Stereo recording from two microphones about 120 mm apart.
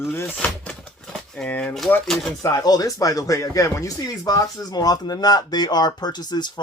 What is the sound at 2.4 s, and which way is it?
Speech, 30° left (ahead or behind).